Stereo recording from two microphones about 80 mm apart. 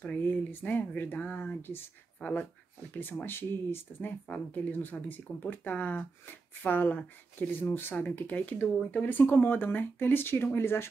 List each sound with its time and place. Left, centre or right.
0.0 s speech: left